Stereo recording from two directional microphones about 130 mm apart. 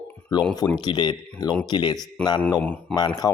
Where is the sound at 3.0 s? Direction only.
30° left (ahead or behind).